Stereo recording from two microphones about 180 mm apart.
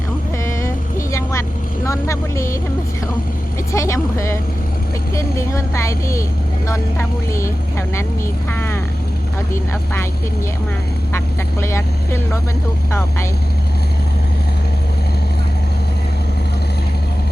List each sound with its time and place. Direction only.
0.4 s vehicle: 15° left (ahead or behind)
3.7 s speech: 15° left (ahead or behind)
11.6 s speech: 15° left (ahead or behind)